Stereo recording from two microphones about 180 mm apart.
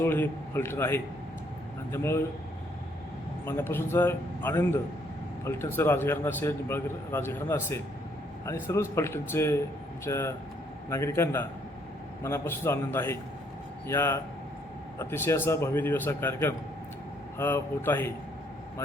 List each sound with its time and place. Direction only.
0.0 s a man's voice: 10° left (ahead or behind)
3.4 s a man's voice: 10° left (ahead or behind)